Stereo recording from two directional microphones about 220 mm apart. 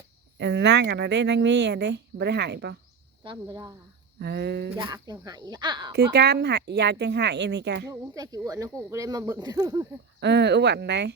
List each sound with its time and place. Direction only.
0.3 s speech: 50° right (ahead or behind)
3.2 s speech: 15° right (ahead or behind)
4.2 s speech: 45° right (ahead or behind)
4.8 s speech: 20° right (ahead or behind)
6.1 s speech: 50° right (ahead or behind)
7.9 s speech: 15° right (ahead or behind)
10.2 s speech: 50° right (ahead or behind)